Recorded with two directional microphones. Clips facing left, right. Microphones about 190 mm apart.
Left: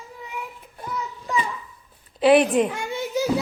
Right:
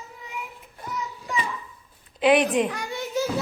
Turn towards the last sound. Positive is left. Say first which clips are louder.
# left 2 dB
turn(degrees=20)  # may be behind; listen again after turning